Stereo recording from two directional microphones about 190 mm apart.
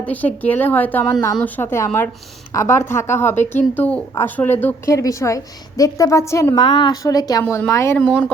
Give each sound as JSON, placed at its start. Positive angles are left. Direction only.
{"t": 0.0, "sound": "a woman's voice", "side_deg": 10}